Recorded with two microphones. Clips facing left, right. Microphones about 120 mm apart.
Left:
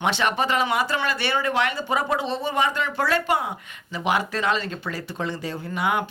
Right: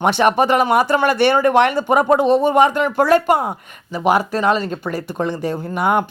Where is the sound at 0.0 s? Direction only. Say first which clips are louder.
Right 8 dB; 45° right (ahead or behind).